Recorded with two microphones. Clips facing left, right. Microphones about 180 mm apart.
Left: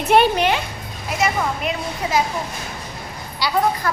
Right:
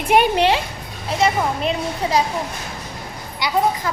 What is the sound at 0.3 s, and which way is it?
A child's voice, 30° right (ahead or behind).